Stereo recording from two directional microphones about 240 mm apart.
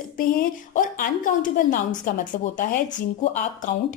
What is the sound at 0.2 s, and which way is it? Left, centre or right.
A woman's voice, left.